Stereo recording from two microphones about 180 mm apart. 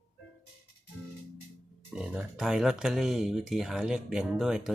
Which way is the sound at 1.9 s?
5° right (ahead or behind).